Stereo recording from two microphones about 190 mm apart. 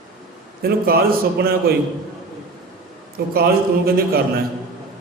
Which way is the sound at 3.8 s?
55° right (ahead or behind).